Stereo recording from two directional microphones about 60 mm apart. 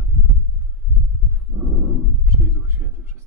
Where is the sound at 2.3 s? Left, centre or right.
Right.